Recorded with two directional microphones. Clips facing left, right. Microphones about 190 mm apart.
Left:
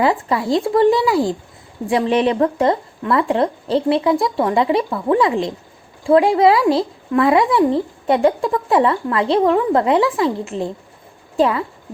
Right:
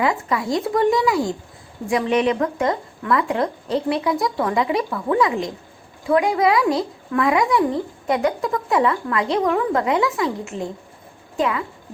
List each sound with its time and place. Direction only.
0.0 s a woman's voice: 30° left (ahead or behind)